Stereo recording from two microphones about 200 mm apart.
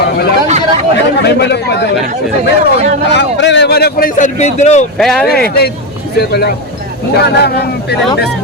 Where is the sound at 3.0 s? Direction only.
60° left (ahead or behind); by 4.8 s 35° left (ahead or behind).